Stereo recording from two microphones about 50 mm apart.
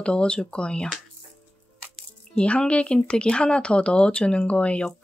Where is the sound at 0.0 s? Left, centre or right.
Centre.